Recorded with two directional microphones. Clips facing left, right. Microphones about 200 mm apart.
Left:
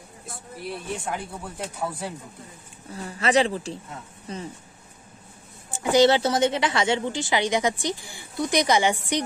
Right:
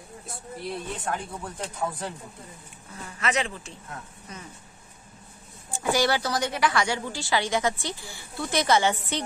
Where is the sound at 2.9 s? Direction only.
35° left (ahead or behind).